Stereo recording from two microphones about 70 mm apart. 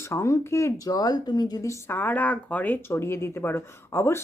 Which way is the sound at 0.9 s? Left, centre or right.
Left.